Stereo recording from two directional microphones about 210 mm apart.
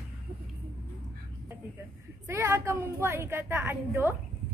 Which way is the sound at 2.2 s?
10° right (ahead or behind).